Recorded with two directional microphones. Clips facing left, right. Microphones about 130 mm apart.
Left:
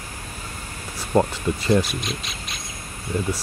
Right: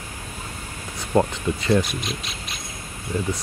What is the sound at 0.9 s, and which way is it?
Speech, centre (ahead or behind).